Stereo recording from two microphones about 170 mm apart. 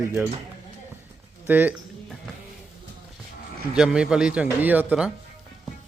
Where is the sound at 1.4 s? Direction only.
10° right (ahead or behind).